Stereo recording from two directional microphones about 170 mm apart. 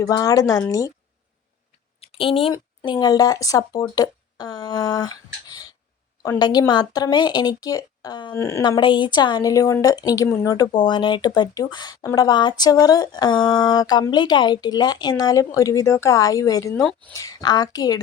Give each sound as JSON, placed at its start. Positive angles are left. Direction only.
{"t": 0.0, "sound": "speech", "side_deg": 20}
{"t": 2.0, "sound": "speech", "side_deg": 35}